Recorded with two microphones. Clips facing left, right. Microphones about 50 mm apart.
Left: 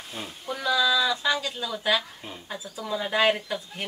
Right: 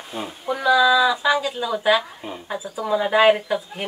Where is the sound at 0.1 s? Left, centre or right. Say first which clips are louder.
Right 8 dB; centre.